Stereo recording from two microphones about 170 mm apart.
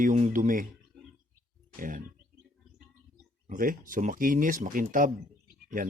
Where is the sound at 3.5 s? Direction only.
55° right (ahead or behind).